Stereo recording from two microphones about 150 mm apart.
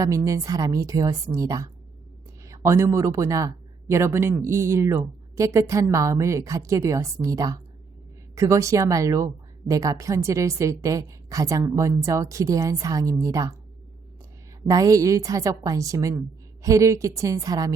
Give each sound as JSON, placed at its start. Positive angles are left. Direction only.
{"t": 0.0, "sound": "speech", "side_deg": -20}
{"t": 14.7, "sound": "speech", "side_deg": -25}